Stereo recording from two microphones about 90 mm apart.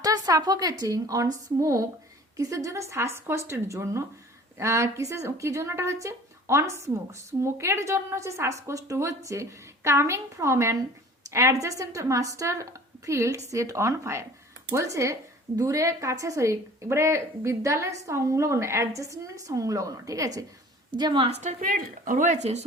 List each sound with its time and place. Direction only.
0.0 s a woman's voice: 45° right (ahead or behind)
20.9 s a woman's voice: 60° right (ahead or behind)